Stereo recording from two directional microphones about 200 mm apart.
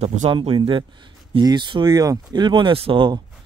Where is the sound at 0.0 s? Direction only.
35° right (ahead or behind).